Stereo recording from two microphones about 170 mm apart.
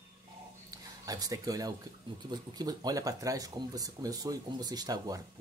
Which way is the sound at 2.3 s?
25° right (ahead or behind).